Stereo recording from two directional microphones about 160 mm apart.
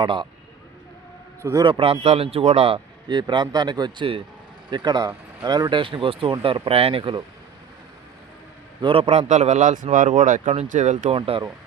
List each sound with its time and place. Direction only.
0.0 s speech: 30° right (ahead or behind)
1.4 s a man's voice: 20° right (ahead or behind)
1.6 s a man's voice: 35° right (ahead or behind)
8.8 s speech: 35° right (ahead or behind)
11.1 s a man's voice: 35° right (ahead or behind)